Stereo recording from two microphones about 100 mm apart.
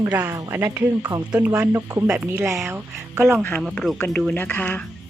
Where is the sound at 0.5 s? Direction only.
25° right (ahead or behind).